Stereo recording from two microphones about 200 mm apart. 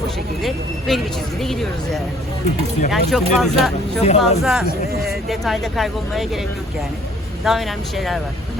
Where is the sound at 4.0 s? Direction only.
30° left (ahead or behind).